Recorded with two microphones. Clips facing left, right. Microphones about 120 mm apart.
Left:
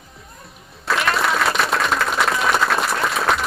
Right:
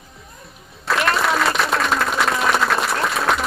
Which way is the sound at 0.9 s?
Centre (ahead or behind).